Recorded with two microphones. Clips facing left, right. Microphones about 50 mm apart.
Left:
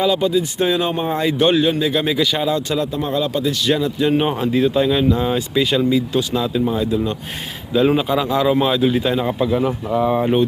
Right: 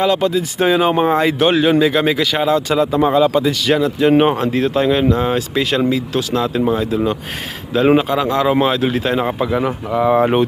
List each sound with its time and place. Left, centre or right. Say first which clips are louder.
0.0 s speech: right 1 dB; right
2.0 s speech: right 2 dB; right
2.5 s speech: right 5 dB; right
4.0 s a man's voice: right 6 dB; right
5.8 s speech: even; right
6.9 s speech: right 3 dB; right
7.8 s a man's voice: right 3 dB; right
9.4 s speech: even; right